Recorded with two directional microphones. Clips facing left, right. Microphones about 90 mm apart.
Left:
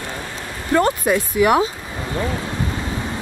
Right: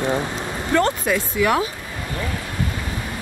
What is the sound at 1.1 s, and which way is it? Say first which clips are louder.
Speech: left 3 dB; 20° left (ahead or behind).